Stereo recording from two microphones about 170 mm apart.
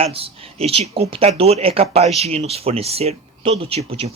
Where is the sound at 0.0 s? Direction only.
35° right (ahead or behind).